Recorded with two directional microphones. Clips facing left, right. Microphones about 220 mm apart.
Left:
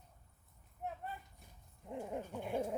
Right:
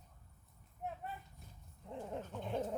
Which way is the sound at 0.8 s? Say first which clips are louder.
Even; centre (ahead or behind).